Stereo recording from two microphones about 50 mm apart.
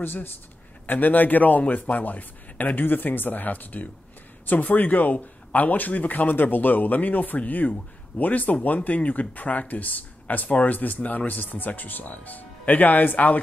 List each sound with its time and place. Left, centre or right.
0.0 s a man's voice: left